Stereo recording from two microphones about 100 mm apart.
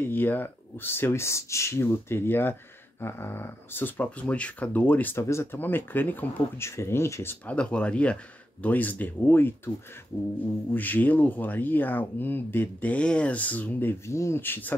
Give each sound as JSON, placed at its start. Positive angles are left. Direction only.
{"t": 0.0, "sound": "speech", "side_deg": 20}
{"t": 7.4, "sound": "speech", "side_deg": 10}
{"t": 10.7, "sound": "speech", "side_deg": 15}